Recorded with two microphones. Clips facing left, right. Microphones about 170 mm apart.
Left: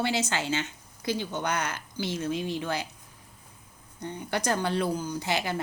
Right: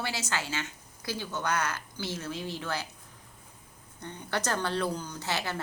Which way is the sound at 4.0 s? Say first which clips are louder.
Left 3 dB; 15° left (ahead or behind).